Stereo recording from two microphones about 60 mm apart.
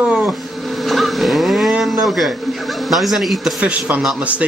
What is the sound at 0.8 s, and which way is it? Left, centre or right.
Speech, centre.